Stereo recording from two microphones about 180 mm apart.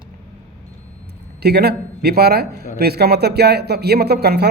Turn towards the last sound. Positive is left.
turn(degrees=-60)  # may be behind; listen again after turning